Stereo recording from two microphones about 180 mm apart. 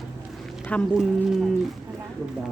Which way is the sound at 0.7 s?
5° left (ahead or behind).